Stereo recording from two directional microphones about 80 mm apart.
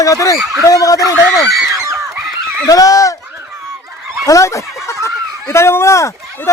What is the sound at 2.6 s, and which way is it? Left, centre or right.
Speech, left.